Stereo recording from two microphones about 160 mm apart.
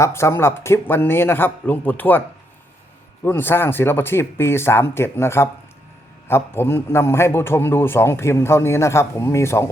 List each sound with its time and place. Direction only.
0.0 s a man's voice: 15° left (ahead or behind)
3.2 s a man's voice: 15° left (ahead or behind)